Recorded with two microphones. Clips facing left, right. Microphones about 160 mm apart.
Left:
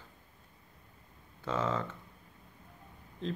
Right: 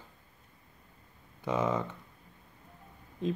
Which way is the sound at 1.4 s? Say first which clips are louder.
Right 3 dB; 15° right (ahead or behind).